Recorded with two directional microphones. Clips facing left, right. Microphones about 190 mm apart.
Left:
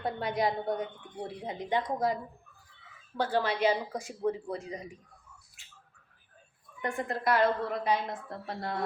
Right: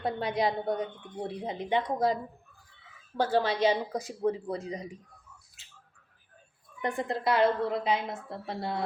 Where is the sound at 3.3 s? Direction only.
30° right (ahead or behind).